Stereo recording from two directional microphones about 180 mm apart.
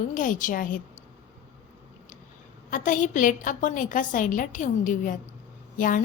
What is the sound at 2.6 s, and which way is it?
A woman's voice, 45° left (ahead or behind).